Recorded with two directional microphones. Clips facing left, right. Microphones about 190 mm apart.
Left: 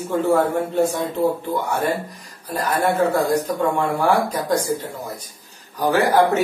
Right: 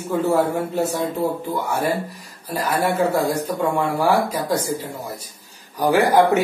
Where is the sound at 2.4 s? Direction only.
10° right (ahead or behind).